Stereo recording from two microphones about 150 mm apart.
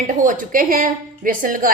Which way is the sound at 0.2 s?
65° right (ahead or behind).